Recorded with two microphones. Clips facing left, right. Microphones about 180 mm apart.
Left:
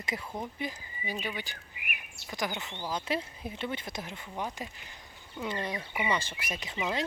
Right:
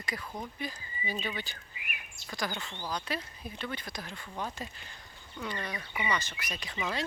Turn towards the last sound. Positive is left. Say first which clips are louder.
# left 2 dB
turn(degrees=20)  # may be behind; listen again after turning